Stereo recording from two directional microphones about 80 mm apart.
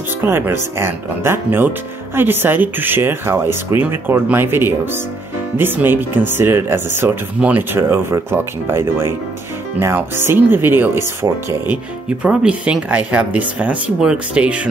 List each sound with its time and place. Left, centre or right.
0.2 s speech: right
7.3 s speech: centre
7.7 s speech: right
12.2 s speech: centre